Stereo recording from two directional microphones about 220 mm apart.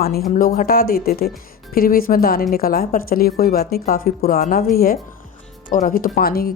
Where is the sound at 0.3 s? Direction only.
40° left (ahead or behind).